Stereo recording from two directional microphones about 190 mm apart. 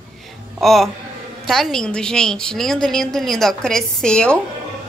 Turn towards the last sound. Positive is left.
turn(degrees=5)  # may be behind; listen again after turning